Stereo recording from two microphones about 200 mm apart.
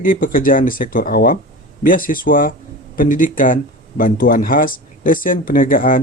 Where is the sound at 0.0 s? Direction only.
45° left (ahead or behind).